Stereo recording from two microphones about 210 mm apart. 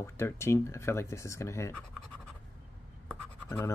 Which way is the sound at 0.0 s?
15° left (ahead or behind).